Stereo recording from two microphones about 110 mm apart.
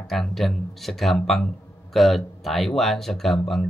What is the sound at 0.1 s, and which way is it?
Speech, centre (ahead or behind).